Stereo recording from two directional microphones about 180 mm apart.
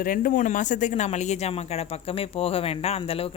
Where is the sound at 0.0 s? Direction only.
50° left (ahead or behind).